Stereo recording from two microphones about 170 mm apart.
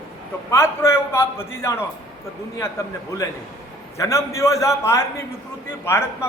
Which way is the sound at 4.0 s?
15° left (ahead or behind).